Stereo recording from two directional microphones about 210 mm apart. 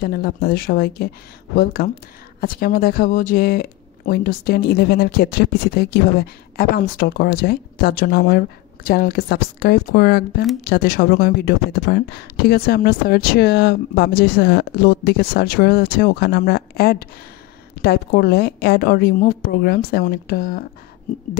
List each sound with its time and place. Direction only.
0.0 s speech: 50° left (ahead or behind)